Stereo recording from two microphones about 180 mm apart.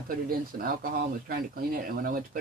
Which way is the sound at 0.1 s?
50° right (ahead or behind).